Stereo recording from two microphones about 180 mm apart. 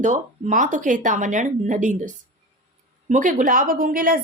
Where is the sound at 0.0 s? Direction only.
45° right (ahead or behind).